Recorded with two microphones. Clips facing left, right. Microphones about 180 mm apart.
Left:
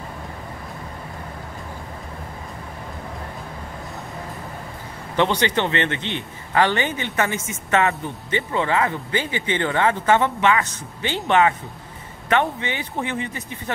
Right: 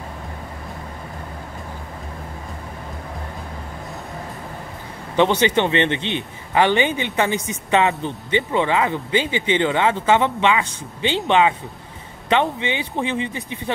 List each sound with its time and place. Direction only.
5.1 s a man's voice: 20° right (ahead or behind)